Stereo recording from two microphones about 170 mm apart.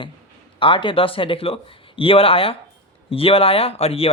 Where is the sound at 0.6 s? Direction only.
30° left (ahead or behind).